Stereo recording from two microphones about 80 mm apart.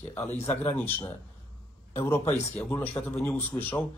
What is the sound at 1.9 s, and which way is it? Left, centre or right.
Speech, left.